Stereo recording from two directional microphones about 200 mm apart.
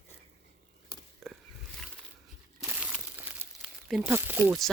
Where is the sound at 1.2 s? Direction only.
Centre (ahead or behind).